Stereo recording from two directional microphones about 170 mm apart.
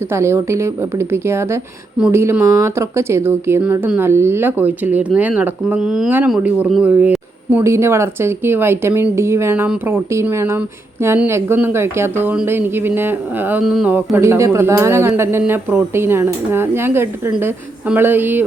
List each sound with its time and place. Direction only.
0.1 s speech: 15° right (ahead or behind)